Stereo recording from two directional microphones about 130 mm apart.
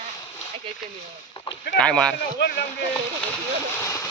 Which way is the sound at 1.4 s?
40° left (ahead or behind).